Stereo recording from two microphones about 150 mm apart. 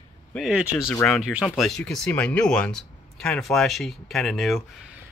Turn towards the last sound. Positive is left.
turn(degrees=0)  # may be behind; listen again after turning